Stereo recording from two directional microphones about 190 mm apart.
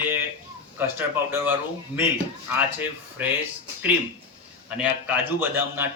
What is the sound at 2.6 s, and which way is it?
Speech, 10° right (ahead or behind).